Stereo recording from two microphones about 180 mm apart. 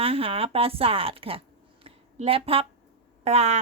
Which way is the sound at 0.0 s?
30° right (ahead or behind).